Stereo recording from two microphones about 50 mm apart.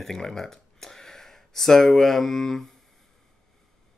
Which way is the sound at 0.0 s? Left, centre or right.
Centre.